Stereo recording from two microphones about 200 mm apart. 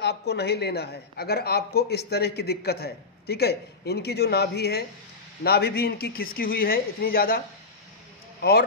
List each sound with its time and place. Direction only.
0.0 s a woman's voice: 55° left (ahead or behind)